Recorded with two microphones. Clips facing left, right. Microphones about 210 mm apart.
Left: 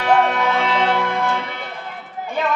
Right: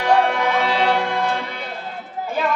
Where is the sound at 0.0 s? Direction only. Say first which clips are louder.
Even; 15° right (ahead or behind).